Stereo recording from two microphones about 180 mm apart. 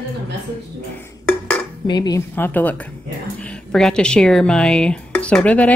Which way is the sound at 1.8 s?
25° left (ahead or behind).